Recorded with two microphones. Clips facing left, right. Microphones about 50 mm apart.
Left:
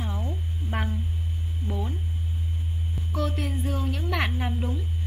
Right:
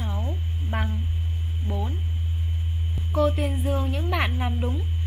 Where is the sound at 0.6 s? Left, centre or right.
Right.